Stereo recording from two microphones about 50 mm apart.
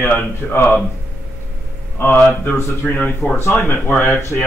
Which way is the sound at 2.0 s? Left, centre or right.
Left.